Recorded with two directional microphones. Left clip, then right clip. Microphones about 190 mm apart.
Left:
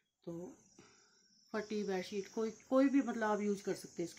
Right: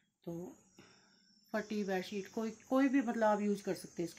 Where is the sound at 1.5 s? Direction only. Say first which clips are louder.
Right 2 dB; 30° right (ahead or behind).